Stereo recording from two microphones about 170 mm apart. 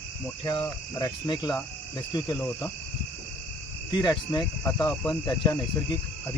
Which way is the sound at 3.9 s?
25° left (ahead or behind).